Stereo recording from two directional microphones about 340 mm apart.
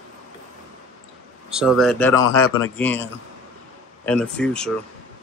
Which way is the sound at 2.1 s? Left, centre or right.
Left.